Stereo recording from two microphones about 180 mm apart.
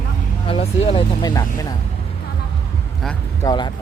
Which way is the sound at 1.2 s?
20° left (ahead or behind).